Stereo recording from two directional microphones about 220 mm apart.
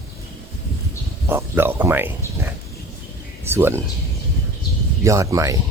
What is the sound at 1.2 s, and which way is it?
Speech, 10° right (ahead or behind).